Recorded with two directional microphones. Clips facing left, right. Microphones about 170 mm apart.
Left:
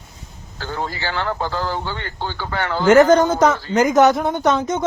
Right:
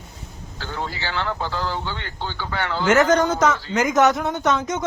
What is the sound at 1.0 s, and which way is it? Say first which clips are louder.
Speech: left 3 dB; 45° left (ahead or behind).